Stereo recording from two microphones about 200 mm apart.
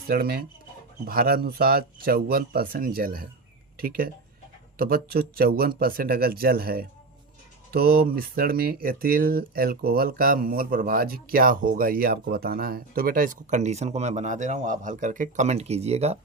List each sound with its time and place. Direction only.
0.1 s speech: 50° right (ahead or behind)
4.8 s speech: 50° right (ahead or behind); by 16.1 s 30° right (ahead or behind)